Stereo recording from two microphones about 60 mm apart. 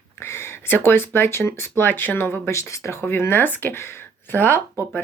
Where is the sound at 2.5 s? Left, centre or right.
Left.